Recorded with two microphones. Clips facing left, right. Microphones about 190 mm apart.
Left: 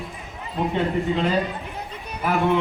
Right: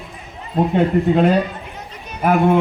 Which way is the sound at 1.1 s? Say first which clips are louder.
Right 7 dB; 55° right (ahead or behind).